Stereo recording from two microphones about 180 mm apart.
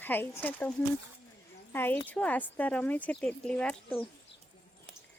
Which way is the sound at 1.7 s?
10° left (ahead or behind).